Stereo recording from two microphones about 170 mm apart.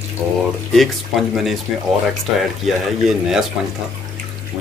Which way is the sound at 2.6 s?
Centre (ahead or behind).